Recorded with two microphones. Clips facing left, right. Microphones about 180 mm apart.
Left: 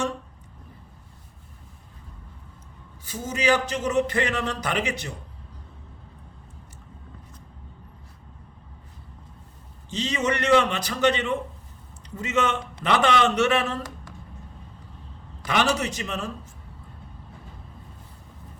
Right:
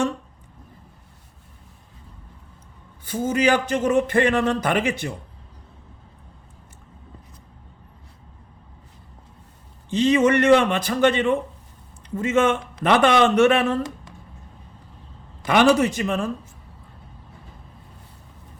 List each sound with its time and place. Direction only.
3.0 s a man's voice: 55° right (ahead or behind)
9.9 s a man's voice: 55° right (ahead or behind)
15.4 s a man's voice: 55° right (ahead or behind)